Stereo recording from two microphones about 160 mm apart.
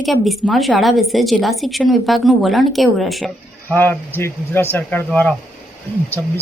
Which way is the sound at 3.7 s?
10° left (ahead or behind).